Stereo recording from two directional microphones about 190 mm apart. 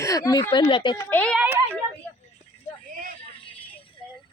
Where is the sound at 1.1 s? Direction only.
5° left (ahead or behind).